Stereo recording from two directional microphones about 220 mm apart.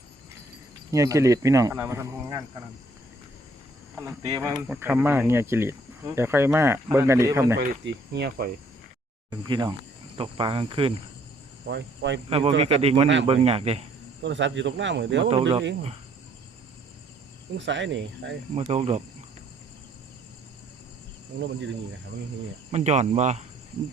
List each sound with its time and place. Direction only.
0.9 s speech: 15° right (ahead or behind)
3.9 s speech: 15° right (ahead or behind)
7.9 s cricket: 50° right (ahead or behind)
9.4 s cricket: 20° right (ahead or behind)
11.7 s cricket: 55° right (ahead or behind)
12.3 s cricket: 25° right (ahead or behind)
14.2 s speech: 55° right (ahead or behind)
15.3 s cricket: 25° right (ahead or behind)
17.7 s speech: 55° right (ahead or behind)
18.5 s cricket: 30° right (ahead or behind)
22.7 s speech: 30° right (ahead or behind)